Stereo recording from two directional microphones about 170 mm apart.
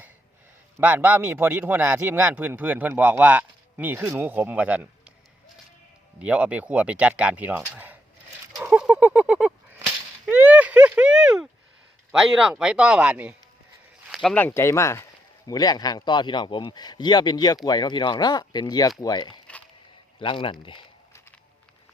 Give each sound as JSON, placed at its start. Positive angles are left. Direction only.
{"t": 0.8, "sound": "a man's voice", "side_deg": -10}
{"t": 6.1, "sound": "a man's voice", "side_deg": -5}
{"t": 8.5, "sound": "a sound", "side_deg": -15}
{"t": 12.1, "sound": "speech", "side_deg": -5}